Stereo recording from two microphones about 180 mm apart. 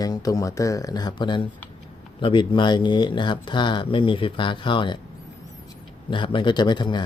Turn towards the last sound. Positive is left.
turn(degrees=25)  # may be behind; listen again after turning